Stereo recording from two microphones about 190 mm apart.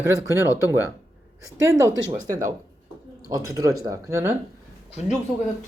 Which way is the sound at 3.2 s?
20° right (ahead or behind).